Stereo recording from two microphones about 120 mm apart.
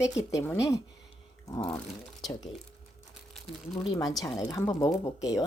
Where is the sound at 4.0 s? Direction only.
30° left (ahead or behind).